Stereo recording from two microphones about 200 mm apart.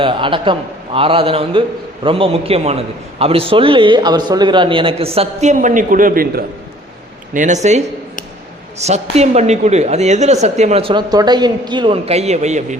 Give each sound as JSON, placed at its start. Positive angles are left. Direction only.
{"t": 0.0, "sound": "a man's voice", "side_deg": -25}
{"t": 8.8, "sound": "a woman's voice", "side_deg": -35}